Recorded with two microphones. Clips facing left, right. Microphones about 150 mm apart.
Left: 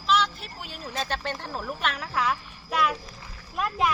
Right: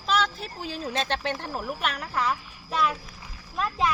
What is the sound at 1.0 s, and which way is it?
Speech, 25° right (ahead or behind).